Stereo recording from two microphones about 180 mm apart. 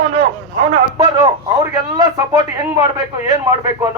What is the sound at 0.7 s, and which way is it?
A man's voice, 25° right (ahead or behind).